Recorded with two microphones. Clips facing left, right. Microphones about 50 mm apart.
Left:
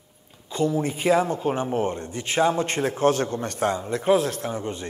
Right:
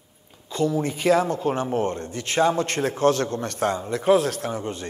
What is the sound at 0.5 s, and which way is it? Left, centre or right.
A man's voice, left.